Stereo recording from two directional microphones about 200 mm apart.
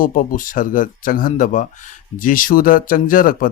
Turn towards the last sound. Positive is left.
turn(degrees=45)  # may be behind; listen again after turning